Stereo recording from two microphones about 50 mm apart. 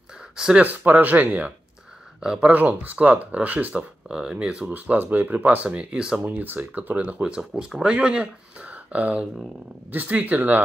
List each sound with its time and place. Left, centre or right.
0.4 s speech: centre
0.7 s speech: right
4.1 s speech: centre
4.7 s speech: right
5.9 s speech: centre
6.2 s speech: right
7.2 s speech: centre; by 10.6 s right